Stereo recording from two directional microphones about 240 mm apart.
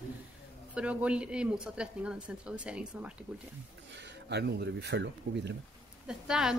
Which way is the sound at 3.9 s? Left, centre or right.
Right.